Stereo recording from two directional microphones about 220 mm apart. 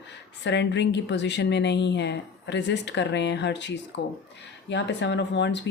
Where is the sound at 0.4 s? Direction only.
55° left (ahead or behind).